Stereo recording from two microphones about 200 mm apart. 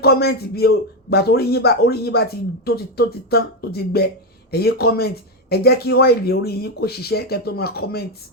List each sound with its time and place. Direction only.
0.0 s a man's voice: 50° left (ahead or behind)